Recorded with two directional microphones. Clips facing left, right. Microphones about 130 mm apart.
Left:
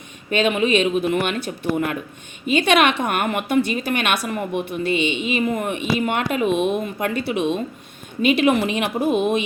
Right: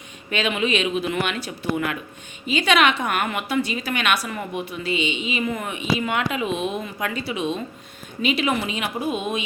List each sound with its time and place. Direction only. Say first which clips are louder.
0.3 s speech: left 5 dB; 45° left (ahead or behind)